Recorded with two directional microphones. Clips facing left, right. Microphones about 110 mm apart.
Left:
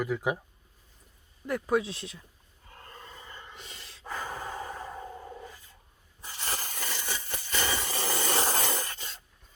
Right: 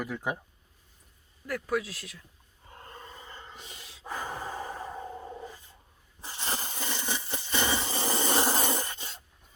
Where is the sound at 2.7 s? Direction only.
20° right (ahead or behind).